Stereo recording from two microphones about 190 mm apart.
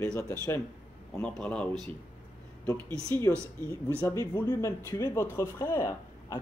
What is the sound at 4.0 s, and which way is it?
Speech, 10° left (ahead or behind).